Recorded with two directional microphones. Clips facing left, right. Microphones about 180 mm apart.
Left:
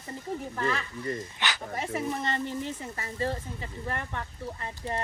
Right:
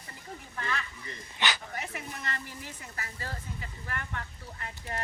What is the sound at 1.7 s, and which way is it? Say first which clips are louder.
Speech: left 8 dB; 30° left (ahead or behind).